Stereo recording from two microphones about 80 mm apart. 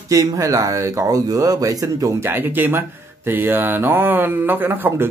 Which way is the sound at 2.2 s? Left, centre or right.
Right.